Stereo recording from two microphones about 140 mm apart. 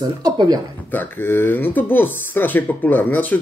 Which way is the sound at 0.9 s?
15° left (ahead or behind).